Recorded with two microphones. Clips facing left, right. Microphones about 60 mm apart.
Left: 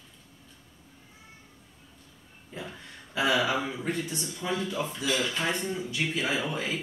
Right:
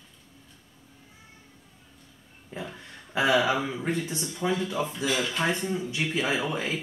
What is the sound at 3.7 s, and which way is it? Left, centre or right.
Speech, right.